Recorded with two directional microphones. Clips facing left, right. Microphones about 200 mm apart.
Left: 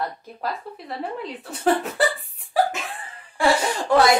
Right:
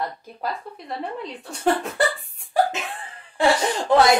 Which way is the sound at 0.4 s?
Centre (ahead or behind).